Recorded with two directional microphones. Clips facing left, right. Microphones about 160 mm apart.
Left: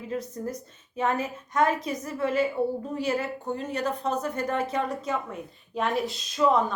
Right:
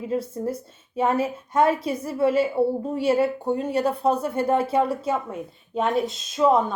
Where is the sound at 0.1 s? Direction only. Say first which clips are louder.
Right 5 dB; 30° right (ahead or behind).